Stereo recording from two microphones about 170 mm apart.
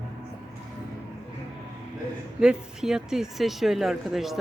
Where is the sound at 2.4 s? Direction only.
5° right (ahead or behind).